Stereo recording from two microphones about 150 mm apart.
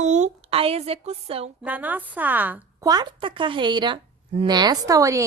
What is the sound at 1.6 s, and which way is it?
A woman's voice, 10° right (ahead or behind).